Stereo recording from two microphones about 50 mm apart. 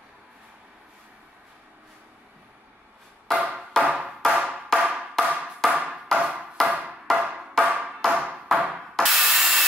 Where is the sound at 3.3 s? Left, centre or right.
Centre.